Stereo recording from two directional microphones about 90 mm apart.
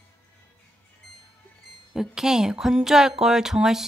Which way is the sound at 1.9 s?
5° right (ahead or behind).